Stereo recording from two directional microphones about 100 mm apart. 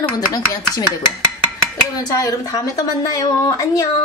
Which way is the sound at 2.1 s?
35° left (ahead or behind).